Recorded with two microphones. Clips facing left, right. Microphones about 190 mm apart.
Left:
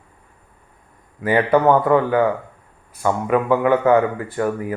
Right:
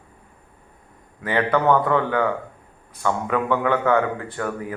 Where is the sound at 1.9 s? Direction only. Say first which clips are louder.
Left 5 dB; 10° left (ahead or behind).